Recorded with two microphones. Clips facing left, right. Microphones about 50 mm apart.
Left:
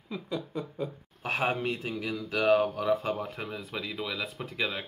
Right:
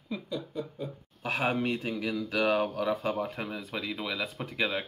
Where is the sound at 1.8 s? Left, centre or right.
Centre.